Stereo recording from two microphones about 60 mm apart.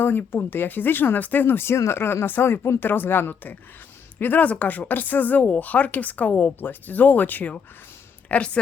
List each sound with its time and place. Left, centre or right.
0.0 s speech: left